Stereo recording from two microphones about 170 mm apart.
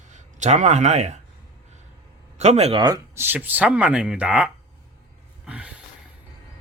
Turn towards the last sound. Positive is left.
turn(degrees=-5)  # may be behind; listen again after turning